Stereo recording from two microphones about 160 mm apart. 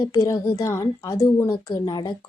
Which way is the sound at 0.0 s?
20° left (ahead or behind).